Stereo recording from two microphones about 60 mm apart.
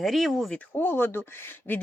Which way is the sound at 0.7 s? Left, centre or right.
Left.